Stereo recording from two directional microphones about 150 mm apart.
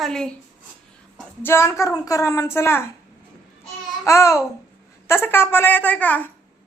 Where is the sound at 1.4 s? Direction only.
15° left (ahead or behind).